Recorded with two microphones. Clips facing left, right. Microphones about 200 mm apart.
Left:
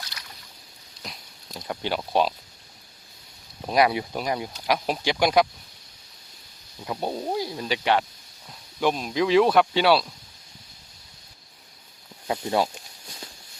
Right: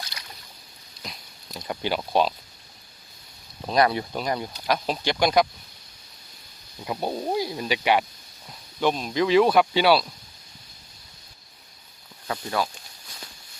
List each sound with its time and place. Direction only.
1.6 s speech: 5° right (ahead or behind)
3.7 s speech: 10° left (ahead or behind)
6.8 s speech: 5° right (ahead or behind)
8.8 s speech: 5° left (ahead or behind)
12.3 s speech: 25° left (ahead or behind)